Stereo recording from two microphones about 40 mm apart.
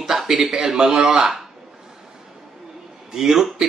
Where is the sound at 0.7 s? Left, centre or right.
Centre.